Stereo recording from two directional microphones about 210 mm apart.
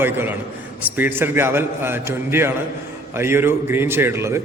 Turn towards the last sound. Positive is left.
turn(degrees=-10)  # may be behind; listen again after turning